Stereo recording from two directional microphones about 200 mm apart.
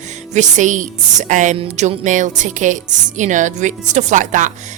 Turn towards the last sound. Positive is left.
turn(degrees=-40)  # may be behind; listen again after turning